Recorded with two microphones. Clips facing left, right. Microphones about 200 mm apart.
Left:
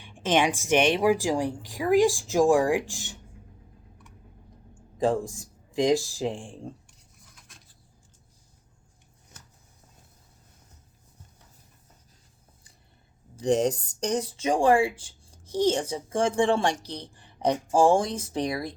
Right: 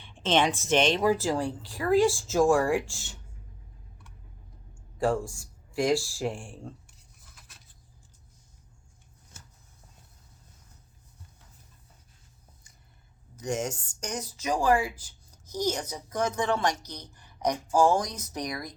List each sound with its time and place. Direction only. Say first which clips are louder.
0.0 s speech: left 1 dB; 10° left (ahead or behind)
4.7 s speech: left 2 dB; 15° left (ahead or behind)
7.3 s a sound: left 1 dB; 5° right (ahead or behind)
13.3 s speech: left 8 dB; 30° left (ahead or behind)